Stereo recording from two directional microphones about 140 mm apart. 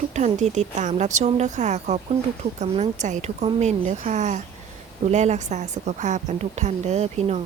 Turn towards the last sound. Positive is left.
turn(degrees=-50)  # may be behind; listen again after turning